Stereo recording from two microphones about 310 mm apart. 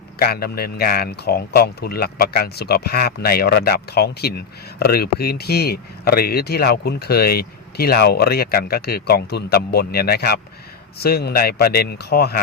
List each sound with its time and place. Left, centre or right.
0.2 s speech: left